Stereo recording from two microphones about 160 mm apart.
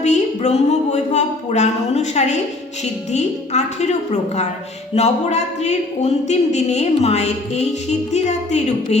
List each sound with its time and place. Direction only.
0.0 s speech: 45° left (ahead or behind)